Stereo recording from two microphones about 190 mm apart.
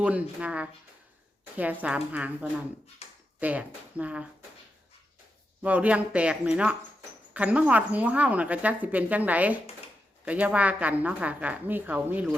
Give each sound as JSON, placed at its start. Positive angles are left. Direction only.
{"t": 0.0, "sound": "a woman's voice", "side_deg": -5}
{"t": 3.0, "sound": "a sound", "side_deg": 35}
{"t": 3.4, "sound": "a woman's voice", "side_deg": -5}
{"t": 5.6, "sound": "a woman's voice", "side_deg": -5}